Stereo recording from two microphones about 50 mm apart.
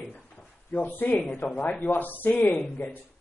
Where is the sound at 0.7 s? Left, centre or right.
Left.